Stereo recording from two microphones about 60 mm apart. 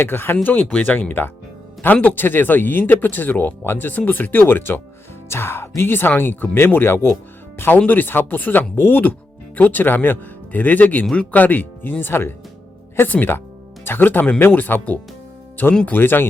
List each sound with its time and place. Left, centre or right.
0.0 s speech: left